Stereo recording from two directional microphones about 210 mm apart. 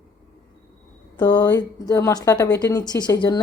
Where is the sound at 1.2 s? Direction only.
20° left (ahead or behind).